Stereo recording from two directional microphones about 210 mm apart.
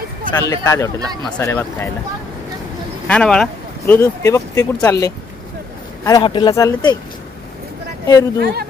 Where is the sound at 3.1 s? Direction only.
5° left (ahead or behind).